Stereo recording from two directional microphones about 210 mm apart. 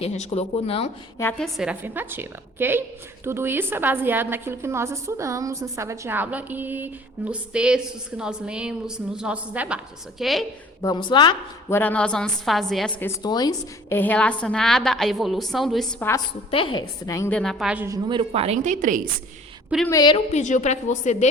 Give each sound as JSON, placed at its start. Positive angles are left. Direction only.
{"t": 0.0, "sound": "speech", "side_deg": 30}
{"t": 1.2, "sound": "a woman's voice", "side_deg": 5}
{"t": 10.8, "sound": "speech", "side_deg": 20}
{"t": 11.7, "sound": "a woman's voice", "side_deg": 10}
{"t": 16.5, "sound": "a woman's voice", "side_deg": 25}
{"t": 19.9, "sound": "speech", "side_deg": 20}
{"t": 20.3, "sound": "a woman's voice", "side_deg": 35}